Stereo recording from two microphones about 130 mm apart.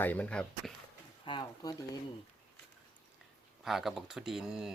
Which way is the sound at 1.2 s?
35° left (ahead or behind).